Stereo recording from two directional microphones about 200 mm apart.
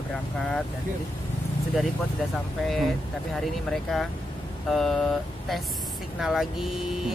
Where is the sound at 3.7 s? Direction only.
Centre (ahead or behind).